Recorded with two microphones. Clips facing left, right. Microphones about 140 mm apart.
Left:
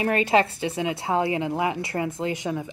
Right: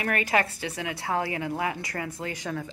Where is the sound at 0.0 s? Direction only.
25° left (ahead or behind).